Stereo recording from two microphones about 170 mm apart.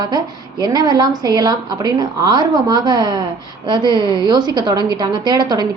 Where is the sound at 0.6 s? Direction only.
25° right (ahead or behind).